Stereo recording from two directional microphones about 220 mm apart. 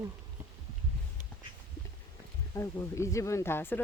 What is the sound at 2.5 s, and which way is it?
Speech, 15° left (ahead or behind).